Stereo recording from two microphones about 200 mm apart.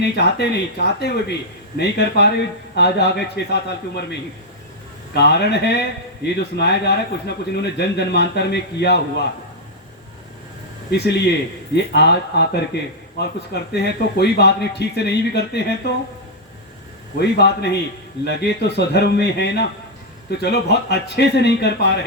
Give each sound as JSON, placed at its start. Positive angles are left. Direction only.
{"t": 0.0, "sound": "speech", "side_deg": 55}
{"t": 10.9, "sound": "speech", "side_deg": 55}
{"t": 17.2, "sound": "speech", "side_deg": 55}